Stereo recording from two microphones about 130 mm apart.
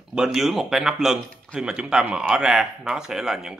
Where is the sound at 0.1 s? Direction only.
5° right (ahead or behind).